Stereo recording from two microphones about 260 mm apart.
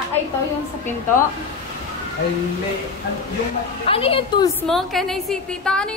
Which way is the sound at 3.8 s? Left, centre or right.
Left.